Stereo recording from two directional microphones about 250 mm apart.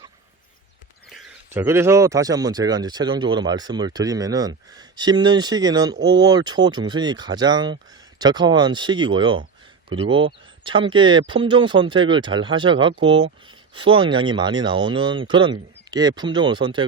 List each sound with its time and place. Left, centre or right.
1.1 s speech: centre